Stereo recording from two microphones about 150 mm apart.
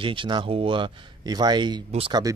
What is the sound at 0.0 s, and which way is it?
A man's voice, 35° right (ahead or behind).